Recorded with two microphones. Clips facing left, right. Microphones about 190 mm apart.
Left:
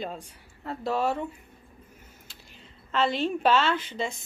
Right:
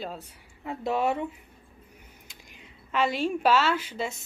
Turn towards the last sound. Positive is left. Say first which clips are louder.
# even
turn(degrees=-10)  # may be behind; listen again after turning